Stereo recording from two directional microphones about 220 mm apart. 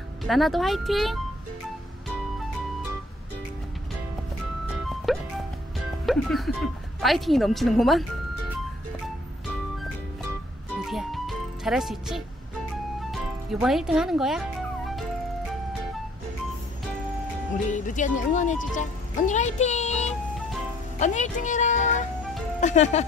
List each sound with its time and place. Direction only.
0.2 s speech: centre (ahead or behind)
4.8 s music: centre (ahead or behind)
6.0 s speech: centre (ahead or behind)
10.9 s music: centre (ahead or behind)
17.6 s speech: 35° left (ahead or behind)